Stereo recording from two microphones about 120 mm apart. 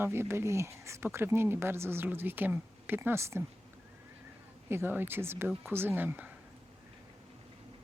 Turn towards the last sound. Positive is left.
turn(degrees=-15)  # may be behind; listen again after turning